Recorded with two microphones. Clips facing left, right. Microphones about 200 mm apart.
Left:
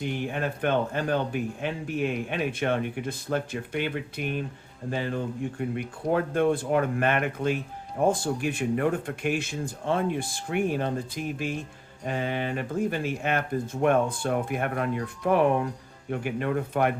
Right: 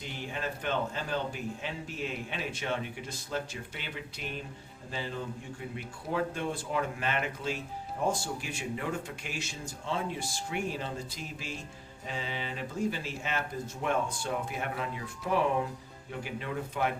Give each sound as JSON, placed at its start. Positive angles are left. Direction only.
{"t": 0.0, "sound": "speech", "side_deg": 55}